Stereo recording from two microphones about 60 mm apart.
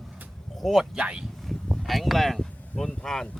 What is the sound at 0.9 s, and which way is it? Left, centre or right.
Speech, centre.